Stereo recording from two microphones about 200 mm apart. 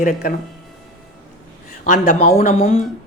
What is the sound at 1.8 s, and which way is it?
Speech, 40° left (ahead or behind).